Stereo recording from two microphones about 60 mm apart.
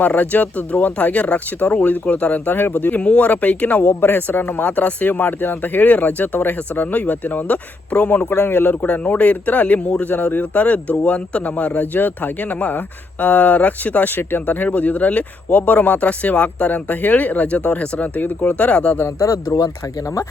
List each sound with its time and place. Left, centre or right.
0.0 s speech: left
3.0 s speech: left
8.8 s speech: left
19.0 s speech: left